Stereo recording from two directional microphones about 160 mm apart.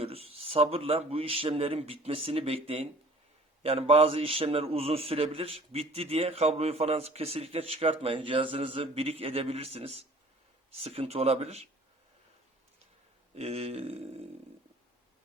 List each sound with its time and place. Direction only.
0.0 s a man's voice: 40° right (ahead or behind)
13.3 s a man's voice: 40° right (ahead or behind)